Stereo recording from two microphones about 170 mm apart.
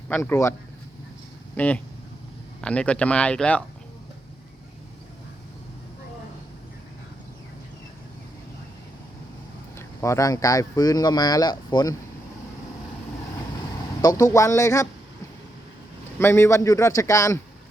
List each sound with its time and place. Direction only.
0.1 s a man's voice: 15° left (ahead or behind)
1.5 s a man's voice: 10° left (ahead or behind)
9.7 s speech: 15° left (ahead or behind)
14.0 s a man's voice: 20° left (ahead or behind)
16.1 s a man's voice: 15° left (ahead or behind)